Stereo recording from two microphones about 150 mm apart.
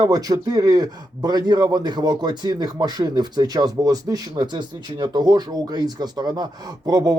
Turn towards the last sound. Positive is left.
turn(degrees=-25)  # may be behind; listen again after turning